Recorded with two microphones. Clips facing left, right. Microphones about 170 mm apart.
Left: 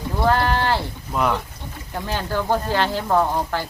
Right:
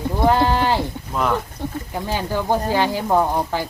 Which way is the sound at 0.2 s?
15° right (ahead or behind).